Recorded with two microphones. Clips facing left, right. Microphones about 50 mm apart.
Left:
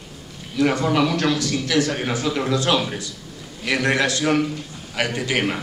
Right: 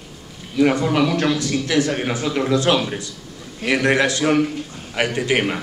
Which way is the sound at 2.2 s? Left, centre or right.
Centre.